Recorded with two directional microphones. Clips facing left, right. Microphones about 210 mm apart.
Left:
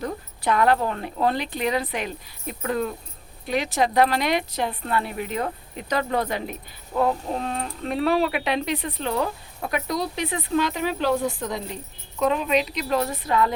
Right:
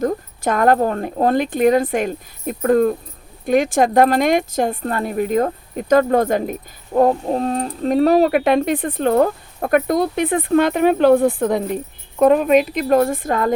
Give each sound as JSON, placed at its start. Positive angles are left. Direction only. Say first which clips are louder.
{"t": 0.0, "sound": "speech", "louder": "right 8 dB", "side_deg": -45}